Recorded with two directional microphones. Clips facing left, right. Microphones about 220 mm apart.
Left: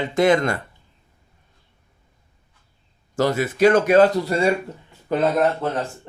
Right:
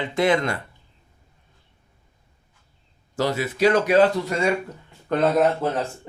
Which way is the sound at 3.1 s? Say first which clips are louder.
Left 3 dB; 50° left (ahead or behind).